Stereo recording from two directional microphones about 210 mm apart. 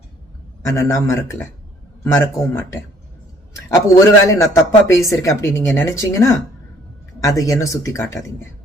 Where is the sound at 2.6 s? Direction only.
15° left (ahead or behind).